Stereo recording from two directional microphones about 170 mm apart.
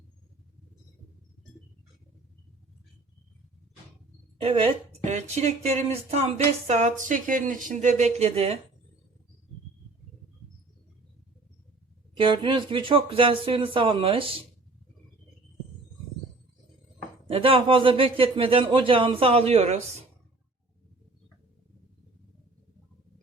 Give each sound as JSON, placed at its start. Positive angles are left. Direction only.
{"t": 4.4, "sound": "speech", "side_deg": -35}
{"t": 12.1, "sound": "speech", "side_deg": -30}
{"t": 17.2, "sound": "speech", "side_deg": -35}